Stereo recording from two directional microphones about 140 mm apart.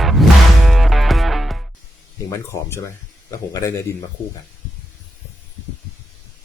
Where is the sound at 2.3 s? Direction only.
20° left (ahead or behind).